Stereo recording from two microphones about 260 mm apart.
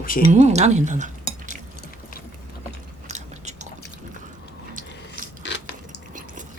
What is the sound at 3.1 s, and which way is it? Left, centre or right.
Biting, right.